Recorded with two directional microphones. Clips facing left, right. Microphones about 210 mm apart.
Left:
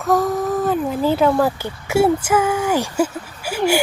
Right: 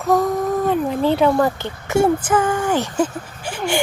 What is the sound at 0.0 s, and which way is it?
Speech, centre (ahead or behind).